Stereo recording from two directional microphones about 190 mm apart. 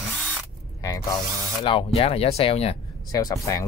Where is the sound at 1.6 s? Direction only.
25° left (ahead or behind).